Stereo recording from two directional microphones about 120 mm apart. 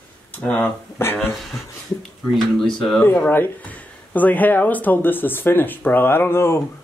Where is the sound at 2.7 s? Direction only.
5° left (ahead or behind).